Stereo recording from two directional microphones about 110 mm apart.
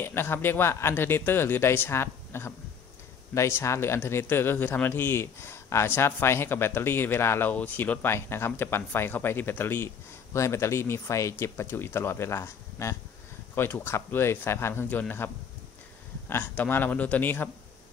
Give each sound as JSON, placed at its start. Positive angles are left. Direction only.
{"t": 0.0, "sound": "speech", "side_deg": 20}